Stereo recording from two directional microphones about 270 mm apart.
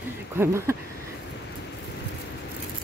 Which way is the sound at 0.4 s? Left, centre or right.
Centre.